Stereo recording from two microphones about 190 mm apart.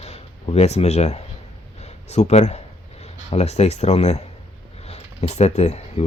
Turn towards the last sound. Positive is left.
turn(degrees=35)  # may be behind; listen again after turning